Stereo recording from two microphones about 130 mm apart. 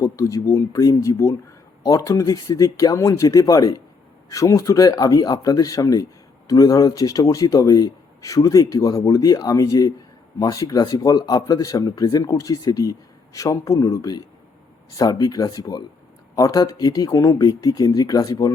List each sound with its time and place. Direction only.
0.0 s speech: 25° left (ahead or behind)